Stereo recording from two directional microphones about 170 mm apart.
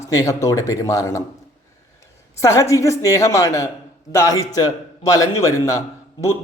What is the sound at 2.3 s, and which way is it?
A woman's voice, 15° left (ahead or behind).